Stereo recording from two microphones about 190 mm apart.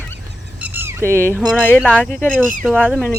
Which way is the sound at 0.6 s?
10° right (ahead or behind).